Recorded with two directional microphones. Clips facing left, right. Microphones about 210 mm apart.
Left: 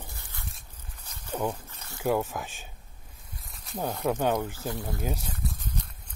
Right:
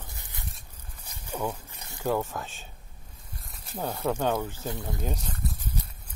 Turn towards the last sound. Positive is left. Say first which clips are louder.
# even
turn(degrees=5)  # may be behind; listen again after turning